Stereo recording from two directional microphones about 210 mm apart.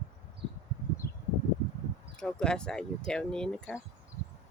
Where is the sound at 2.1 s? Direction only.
5° left (ahead or behind).